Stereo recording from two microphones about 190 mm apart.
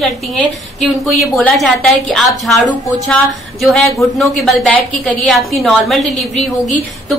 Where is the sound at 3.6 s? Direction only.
Centre (ahead or behind).